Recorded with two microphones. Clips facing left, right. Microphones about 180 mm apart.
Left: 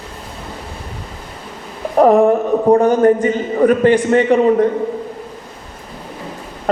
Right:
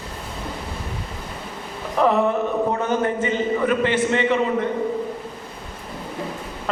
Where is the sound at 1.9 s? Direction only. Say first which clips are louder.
Left 8 dB; 45° left (ahead or behind).